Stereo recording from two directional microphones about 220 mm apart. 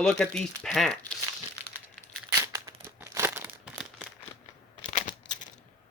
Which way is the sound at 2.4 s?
15° right (ahead or behind).